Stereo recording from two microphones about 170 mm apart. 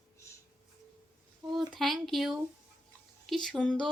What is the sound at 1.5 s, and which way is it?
Speech, centre (ahead or behind).